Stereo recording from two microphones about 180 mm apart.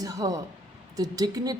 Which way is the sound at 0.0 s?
20° right (ahead or behind).